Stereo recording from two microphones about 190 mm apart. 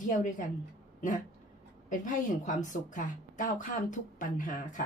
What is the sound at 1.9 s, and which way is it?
A woman's voice, 40° left (ahead or behind).